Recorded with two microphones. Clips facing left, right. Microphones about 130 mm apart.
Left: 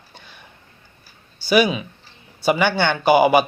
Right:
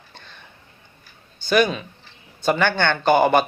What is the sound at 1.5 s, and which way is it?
Speech, 5° left (ahead or behind).